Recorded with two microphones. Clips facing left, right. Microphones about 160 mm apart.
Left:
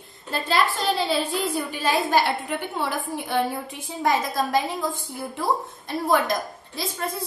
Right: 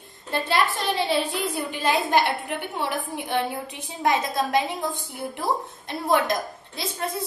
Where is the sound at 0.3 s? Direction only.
20° right (ahead or behind).